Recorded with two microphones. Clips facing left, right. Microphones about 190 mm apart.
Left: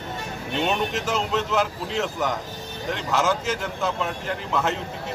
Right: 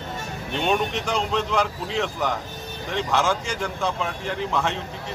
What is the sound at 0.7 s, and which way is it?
Speech, 5° left (ahead or behind).